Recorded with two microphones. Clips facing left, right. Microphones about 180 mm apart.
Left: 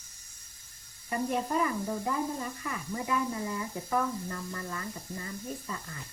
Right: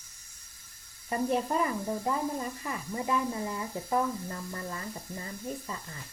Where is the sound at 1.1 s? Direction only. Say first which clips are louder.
Right 2 dB; 25° right (ahead or behind).